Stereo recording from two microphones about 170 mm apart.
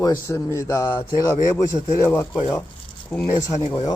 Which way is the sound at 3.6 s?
25° left (ahead or behind).